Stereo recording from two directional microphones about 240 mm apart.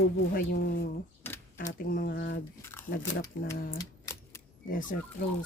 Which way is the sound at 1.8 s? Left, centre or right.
Left.